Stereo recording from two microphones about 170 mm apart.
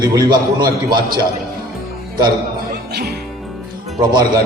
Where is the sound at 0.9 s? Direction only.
60° right (ahead or behind).